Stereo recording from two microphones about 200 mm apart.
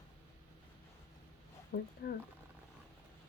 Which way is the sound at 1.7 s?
50° left (ahead or behind).